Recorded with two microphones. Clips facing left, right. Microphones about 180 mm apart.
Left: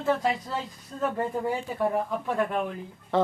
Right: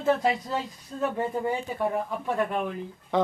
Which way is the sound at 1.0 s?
5° right (ahead or behind).